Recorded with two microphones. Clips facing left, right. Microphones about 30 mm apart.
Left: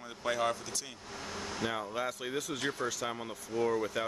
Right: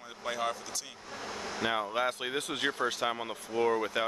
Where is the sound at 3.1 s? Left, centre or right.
Right.